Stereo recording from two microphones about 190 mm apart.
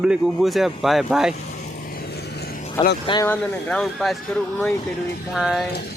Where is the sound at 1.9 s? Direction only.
55° left (ahead or behind).